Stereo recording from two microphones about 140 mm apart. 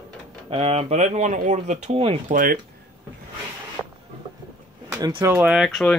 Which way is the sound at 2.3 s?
70° right (ahead or behind).